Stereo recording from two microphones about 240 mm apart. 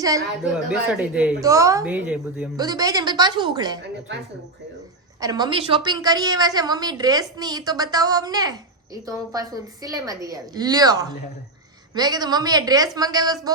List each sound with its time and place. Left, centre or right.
0.7 s a woman's voice: centre
5.2 s a woman's voice: centre